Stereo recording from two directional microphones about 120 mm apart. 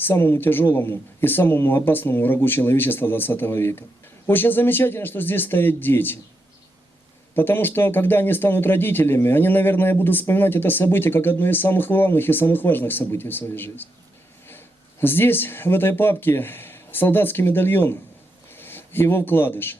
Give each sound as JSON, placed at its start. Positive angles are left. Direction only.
{"t": 0.0, "sound": "a man's voice", "side_deg": 20}
{"t": 7.3, "sound": "a man's voice", "side_deg": 15}
{"t": 15.0, "sound": "a man's voice", "side_deg": 15}